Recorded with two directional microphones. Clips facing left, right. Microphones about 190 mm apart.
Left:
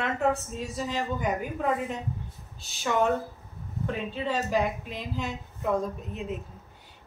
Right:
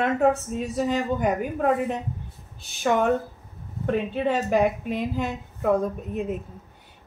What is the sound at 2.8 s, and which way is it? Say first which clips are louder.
Speech: right 4 dB; 55° right (ahead or behind).